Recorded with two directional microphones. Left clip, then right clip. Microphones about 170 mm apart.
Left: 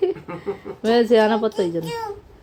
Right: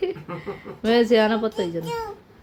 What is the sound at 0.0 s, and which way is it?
A woman's voice, 15° left (ahead or behind).